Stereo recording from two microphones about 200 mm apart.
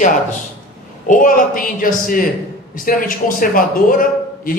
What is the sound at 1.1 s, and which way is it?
A man's voice, 40° left (ahead or behind).